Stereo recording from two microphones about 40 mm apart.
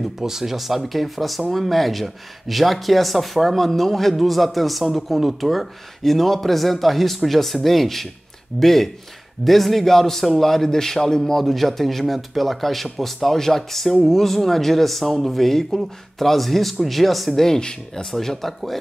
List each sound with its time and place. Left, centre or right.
0.2 s speech: centre
17.4 s speech: centre